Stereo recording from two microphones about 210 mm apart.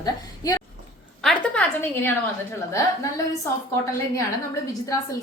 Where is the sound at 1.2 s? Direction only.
5° left (ahead or behind).